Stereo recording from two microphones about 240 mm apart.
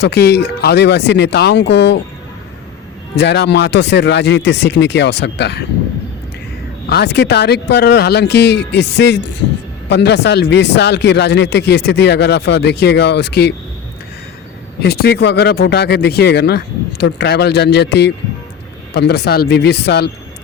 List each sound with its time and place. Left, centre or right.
0.0 s speech: left
3.2 s speech: left
6.8 s speech: left
14.8 s speech: left